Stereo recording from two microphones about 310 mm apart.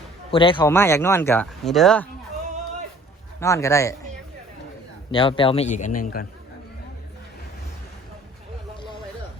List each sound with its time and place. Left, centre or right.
0.3 s speech: centre
3.4 s speech: centre
5.1 s speech: centre